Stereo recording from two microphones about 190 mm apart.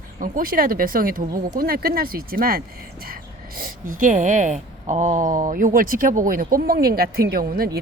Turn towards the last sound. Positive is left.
turn(degrees=-50)  # may be behind; listen again after turning